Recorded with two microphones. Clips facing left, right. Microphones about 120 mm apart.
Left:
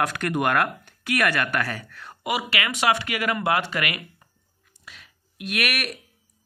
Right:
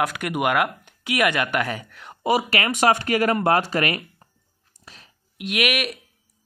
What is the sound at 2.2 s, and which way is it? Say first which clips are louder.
Speech: right 5 dB; 40° right (ahead or behind).